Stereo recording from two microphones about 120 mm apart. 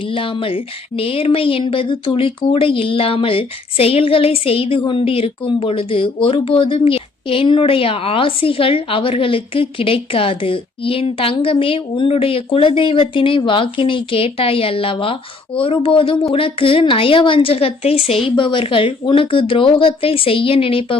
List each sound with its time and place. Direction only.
0.0 s speech: 45° left (ahead or behind)